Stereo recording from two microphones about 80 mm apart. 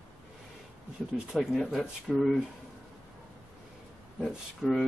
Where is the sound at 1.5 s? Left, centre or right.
Centre.